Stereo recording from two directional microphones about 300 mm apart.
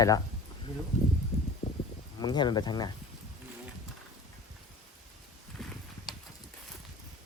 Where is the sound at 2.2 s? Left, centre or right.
Centre.